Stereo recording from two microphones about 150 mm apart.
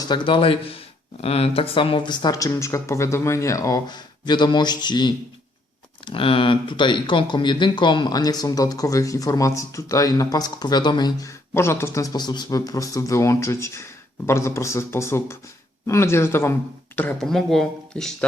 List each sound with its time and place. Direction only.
0.1 s a man's voice: 35° left (ahead or behind); by 18.3 s 5° left (ahead or behind)